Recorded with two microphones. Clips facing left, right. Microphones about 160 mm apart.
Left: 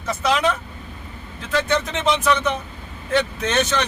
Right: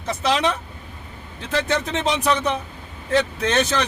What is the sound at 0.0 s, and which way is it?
Speech, 30° right (ahead or behind).